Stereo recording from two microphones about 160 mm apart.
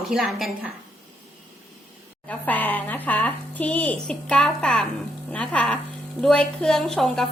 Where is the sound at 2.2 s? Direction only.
10° left (ahead or behind).